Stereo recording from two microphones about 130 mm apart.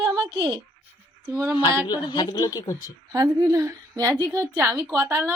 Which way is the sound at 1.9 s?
35° left (ahead or behind).